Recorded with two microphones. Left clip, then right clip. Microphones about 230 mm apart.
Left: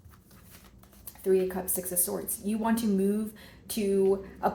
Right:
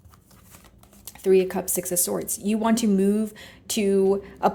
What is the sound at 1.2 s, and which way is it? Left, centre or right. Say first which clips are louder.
Speech: right 6 dB; right.